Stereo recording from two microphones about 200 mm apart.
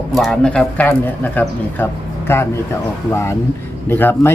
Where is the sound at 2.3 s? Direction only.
10° left (ahead or behind).